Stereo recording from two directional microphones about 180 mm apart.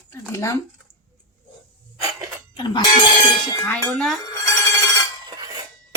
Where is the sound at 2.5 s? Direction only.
25° left (ahead or behind).